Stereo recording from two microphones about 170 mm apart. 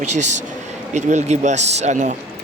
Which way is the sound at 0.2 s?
45° right (ahead or behind).